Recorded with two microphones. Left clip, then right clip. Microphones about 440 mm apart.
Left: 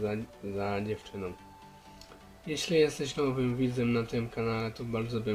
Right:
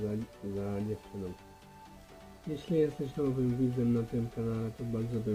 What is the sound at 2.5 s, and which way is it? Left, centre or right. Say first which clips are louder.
Speech: left 4 dB; left.